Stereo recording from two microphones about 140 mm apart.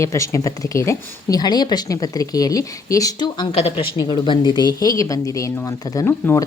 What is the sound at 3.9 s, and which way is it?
Speech, 30° left (ahead or behind).